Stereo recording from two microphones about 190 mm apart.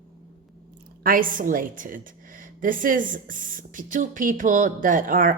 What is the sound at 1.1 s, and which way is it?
A woman's voice, 45° right (ahead or behind).